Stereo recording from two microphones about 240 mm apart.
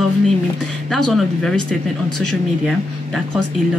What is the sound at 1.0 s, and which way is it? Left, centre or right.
A woman's voice, centre.